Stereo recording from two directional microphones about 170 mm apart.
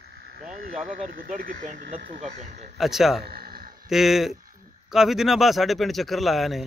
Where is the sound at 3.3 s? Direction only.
65° right (ahead or behind).